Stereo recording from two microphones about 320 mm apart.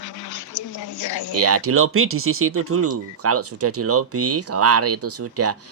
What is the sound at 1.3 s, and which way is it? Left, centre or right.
Speech, right.